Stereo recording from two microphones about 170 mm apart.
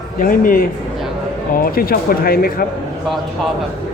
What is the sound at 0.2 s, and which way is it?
Speech, 55° left (ahead or behind).